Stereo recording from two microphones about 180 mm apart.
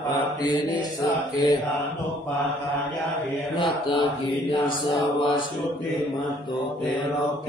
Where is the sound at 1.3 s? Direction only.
25° left (ahead or behind).